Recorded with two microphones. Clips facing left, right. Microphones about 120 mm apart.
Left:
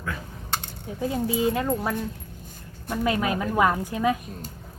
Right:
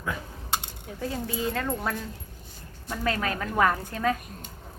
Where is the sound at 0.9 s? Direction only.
15° left (ahead or behind).